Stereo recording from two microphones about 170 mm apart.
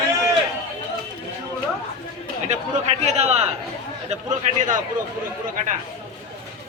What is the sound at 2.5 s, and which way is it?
A man's voice, 40° right (ahead or behind).